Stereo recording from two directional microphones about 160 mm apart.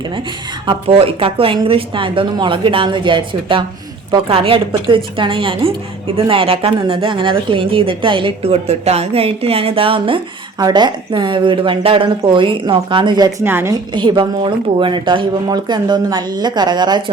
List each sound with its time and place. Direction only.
0.7 s speech: 35° right (ahead or behind)
13.4 s a woman's voice: 15° right (ahead or behind)
13.9 s speech: 30° right (ahead or behind)